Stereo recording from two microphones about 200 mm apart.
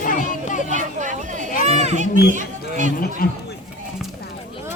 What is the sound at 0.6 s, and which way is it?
Speech, 40° right (ahead or behind).